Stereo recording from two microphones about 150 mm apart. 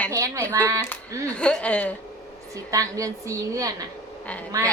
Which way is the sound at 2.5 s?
20° right (ahead or behind).